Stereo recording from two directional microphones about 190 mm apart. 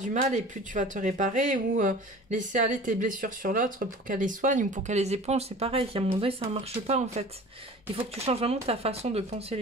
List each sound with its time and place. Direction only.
0.0 s speech: 40° right (ahead or behind)